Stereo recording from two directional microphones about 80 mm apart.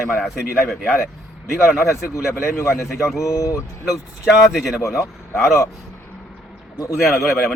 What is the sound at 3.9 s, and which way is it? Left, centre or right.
Speech, centre.